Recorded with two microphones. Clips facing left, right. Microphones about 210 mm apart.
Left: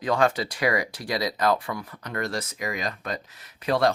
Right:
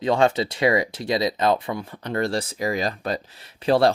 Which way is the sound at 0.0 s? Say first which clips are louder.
Right 3 dB; 25° right (ahead or behind).